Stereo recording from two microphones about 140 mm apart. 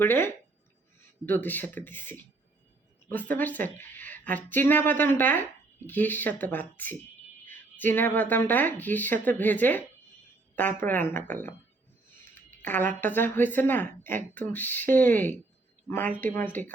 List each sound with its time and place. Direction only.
0.0 s speech: 15° left (ahead or behind)
12.6 s speech: 10° left (ahead or behind)